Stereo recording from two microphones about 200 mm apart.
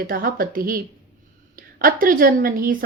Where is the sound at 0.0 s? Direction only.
45° right (ahead or behind).